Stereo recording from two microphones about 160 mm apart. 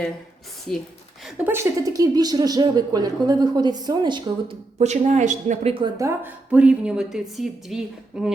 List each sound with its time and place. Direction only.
1.5 s a woman's voice: 20° right (ahead or behind)
4.8 s a man's voice: 45° right (ahead or behind)
5.7 s a woman's voice: 25° right (ahead or behind); by 8.3 s 5° right (ahead or behind)